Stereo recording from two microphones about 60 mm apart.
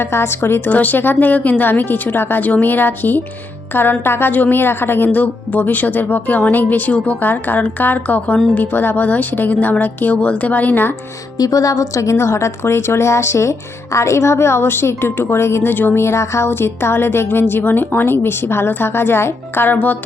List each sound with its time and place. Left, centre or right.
0.0 s a woman's voice: left
0.7 s a woman's voice: left
4.3 s a woman's voice: left
7.2 s a woman's voice: left
11.3 s a woman's voice: left
15.7 s a woman's voice: left
16.0 s a woman's voice: left